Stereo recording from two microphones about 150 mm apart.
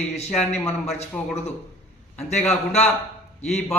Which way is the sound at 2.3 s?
45° left (ahead or behind).